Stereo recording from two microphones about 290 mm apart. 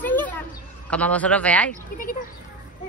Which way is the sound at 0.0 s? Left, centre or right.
Centre.